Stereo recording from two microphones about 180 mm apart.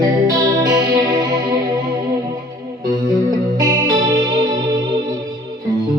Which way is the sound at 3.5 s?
20° right (ahead or behind).